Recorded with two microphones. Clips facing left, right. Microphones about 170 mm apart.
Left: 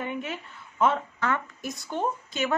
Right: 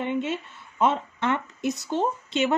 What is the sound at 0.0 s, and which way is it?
Speech, 25° right (ahead or behind).